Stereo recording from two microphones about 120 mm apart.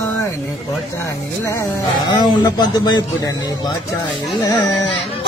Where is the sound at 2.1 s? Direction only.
35° left (ahead or behind).